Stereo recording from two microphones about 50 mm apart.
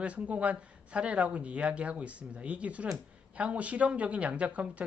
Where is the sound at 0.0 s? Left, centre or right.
Right.